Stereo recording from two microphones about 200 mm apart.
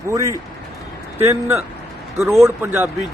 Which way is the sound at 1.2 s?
15° right (ahead or behind).